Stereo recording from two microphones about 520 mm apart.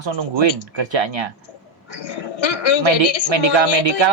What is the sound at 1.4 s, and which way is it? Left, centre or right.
A woman's voice, left.